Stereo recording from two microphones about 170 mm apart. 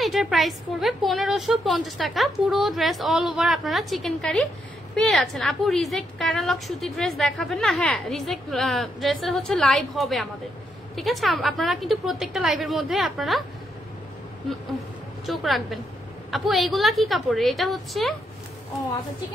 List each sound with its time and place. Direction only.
0.0 s a woman's voice: centre (ahead or behind)
15.2 s a woman's voice: centre (ahead or behind)